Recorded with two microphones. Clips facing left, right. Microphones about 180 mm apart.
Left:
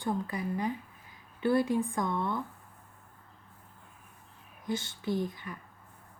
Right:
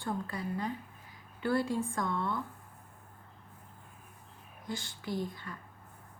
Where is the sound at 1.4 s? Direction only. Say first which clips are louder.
Left 4 dB; 20° left (ahead or behind).